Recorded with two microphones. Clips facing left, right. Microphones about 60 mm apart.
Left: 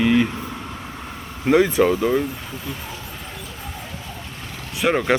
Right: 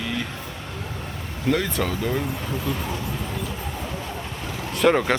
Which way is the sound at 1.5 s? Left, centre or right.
Centre.